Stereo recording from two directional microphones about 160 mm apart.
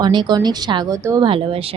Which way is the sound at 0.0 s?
25° right (ahead or behind).